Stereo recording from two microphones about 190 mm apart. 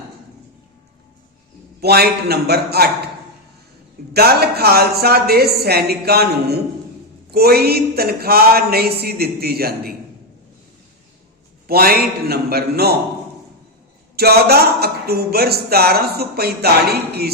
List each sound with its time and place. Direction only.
1.8 s speech: 55° right (ahead or behind)
4.1 s speech: 55° right (ahead or behind)
11.7 s speech: 55° right (ahead or behind)
14.2 s speech: 55° right (ahead or behind)